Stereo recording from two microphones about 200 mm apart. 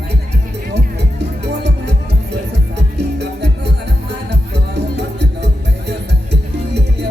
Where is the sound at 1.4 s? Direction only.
55° right (ahead or behind).